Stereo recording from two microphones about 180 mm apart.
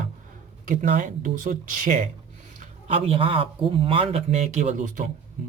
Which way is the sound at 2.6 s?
35° right (ahead or behind).